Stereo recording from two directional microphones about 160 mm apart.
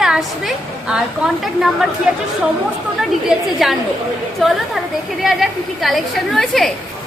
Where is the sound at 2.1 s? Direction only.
10° right (ahead or behind).